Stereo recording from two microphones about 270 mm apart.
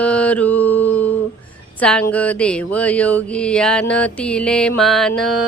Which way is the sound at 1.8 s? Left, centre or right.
Centre.